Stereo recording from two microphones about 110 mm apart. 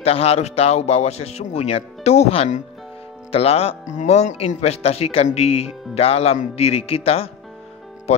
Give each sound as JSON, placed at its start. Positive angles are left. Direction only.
{"t": 0.0, "sound": "speech", "side_deg": 65}
{"t": 3.3, "sound": "speech", "side_deg": 65}